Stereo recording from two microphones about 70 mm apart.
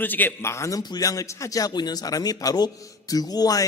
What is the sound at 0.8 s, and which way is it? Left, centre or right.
A man's voice, left.